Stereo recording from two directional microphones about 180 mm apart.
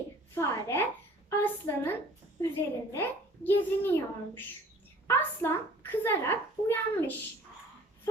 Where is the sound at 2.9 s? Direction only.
10° left (ahead or behind).